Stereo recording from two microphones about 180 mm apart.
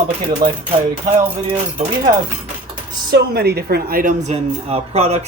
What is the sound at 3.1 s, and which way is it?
A woman's voice, 60° right (ahead or behind).